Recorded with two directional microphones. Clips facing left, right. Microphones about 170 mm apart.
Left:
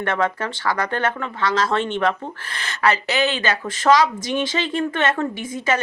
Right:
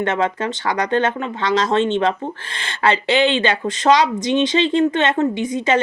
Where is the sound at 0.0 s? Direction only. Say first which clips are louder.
Right 3 dB; 20° right (ahead or behind).